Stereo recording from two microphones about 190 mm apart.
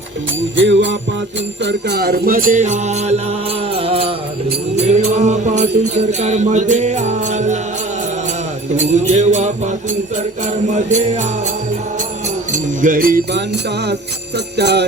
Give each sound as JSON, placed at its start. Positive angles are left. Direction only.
{"t": 0.5, "sound": "jingle bell", "side_deg": -75}
{"t": 1.6, "sound": "music", "side_deg": -60}
{"t": 8.7, "sound": "music", "side_deg": -40}
{"t": 10.7, "sound": "music", "side_deg": -40}
{"t": 12.8, "sound": "music", "side_deg": -45}
{"t": 14.5, "sound": "jingle bell", "side_deg": -65}